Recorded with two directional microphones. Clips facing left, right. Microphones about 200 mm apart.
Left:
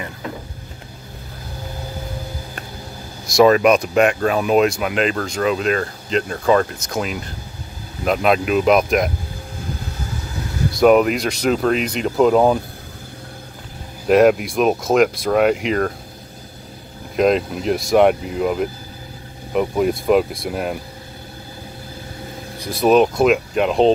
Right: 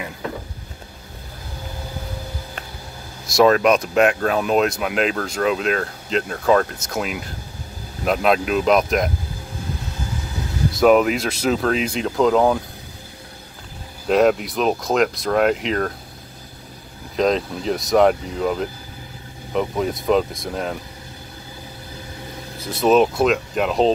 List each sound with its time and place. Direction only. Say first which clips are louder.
3.3 s speech: left 2 dB; 5° left (ahead or behind)
10.8 s speech: left 2 dB; centre (ahead or behind)
12.3 s speech: left 1 dB; 15° left (ahead or behind)
14.0 s speech: left 3 dB; centre (ahead or behind)
17.2 s speech: left 3 dB; 5° left (ahead or behind)
22.9 s speech: left 3 dB; 5° left (ahead or behind)